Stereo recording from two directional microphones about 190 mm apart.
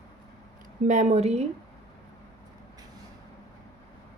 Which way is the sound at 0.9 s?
40° right (ahead or behind).